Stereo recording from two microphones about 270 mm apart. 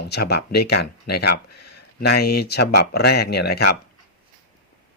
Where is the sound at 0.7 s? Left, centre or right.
Left.